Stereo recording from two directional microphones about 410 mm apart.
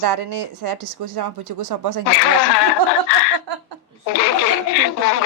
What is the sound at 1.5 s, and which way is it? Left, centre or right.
Speech, right.